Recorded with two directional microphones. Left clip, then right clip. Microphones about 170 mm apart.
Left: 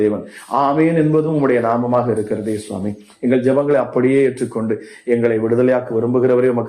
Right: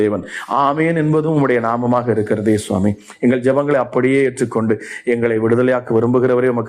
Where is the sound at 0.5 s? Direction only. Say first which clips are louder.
Left 1 dB; 25° right (ahead or behind).